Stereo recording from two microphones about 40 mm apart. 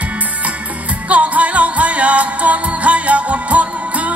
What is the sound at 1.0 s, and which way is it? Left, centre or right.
Music, right.